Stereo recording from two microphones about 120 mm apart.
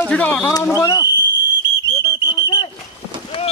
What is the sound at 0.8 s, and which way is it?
Speech, 25° left (ahead or behind).